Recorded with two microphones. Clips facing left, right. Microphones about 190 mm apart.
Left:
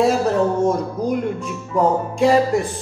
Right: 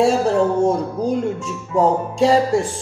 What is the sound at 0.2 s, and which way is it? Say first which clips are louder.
Speech: right 1 dB; 30° right (ahead or behind).